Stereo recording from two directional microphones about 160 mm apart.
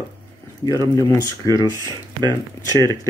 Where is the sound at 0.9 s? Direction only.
20° left (ahead or behind).